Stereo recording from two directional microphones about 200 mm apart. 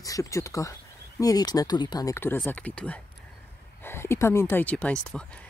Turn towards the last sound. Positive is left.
turn(degrees=5)  # may be behind; listen again after turning